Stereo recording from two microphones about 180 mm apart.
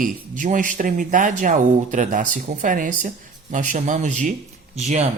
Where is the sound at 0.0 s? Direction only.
45° right (ahead or behind).